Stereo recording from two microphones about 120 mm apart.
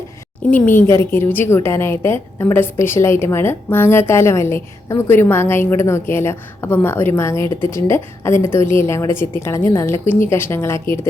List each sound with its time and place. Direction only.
0.5 s a woman's voice: 15° left (ahead or behind)